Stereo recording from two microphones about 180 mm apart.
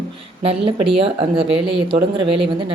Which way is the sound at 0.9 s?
30° right (ahead or behind).